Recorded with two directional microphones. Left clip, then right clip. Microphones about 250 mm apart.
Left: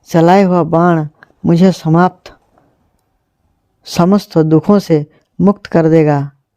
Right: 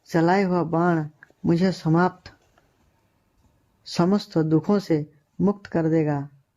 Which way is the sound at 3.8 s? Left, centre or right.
Left.